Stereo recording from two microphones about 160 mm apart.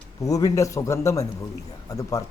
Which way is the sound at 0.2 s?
20° left (ahead or behind).